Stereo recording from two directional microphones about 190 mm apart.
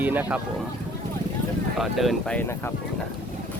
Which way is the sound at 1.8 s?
Centre (ahead or behind).